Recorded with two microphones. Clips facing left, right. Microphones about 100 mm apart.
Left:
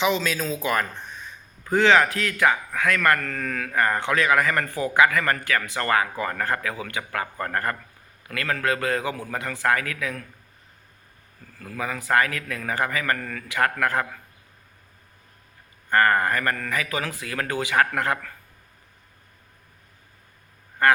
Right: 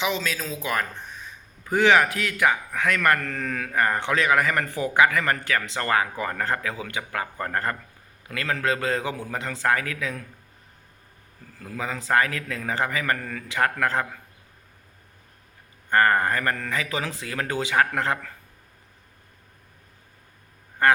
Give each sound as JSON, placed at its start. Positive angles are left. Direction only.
{"t": 0.0, "sound": "a man's voice", "side_deg": 0}
{"t": 11.6, "sound": "a man's voice", "side_deg": -20}
{"t": 15.9, "sound": "a man's voice", "side_deg": -20}
{"t": 20.8, "sound": "quack", "side_deg": -20}